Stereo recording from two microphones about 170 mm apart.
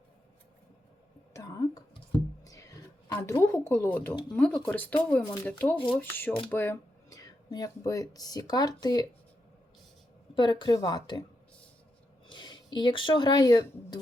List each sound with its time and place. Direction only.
1.3 s whispering: 20° left (ahead or behind)
2.4 s a sound: 20° left (ahead or behind)
4.1 s a woman's voice: 25° left (ahead or behind)
4.4 s speech: 5° left (ahead or behind); by 9.0 s 25° left (ahead or behind)
10.3 s a woman's voice: 30° left (ahead or behind)
12.3 s speech: 25° left (ahead or behind)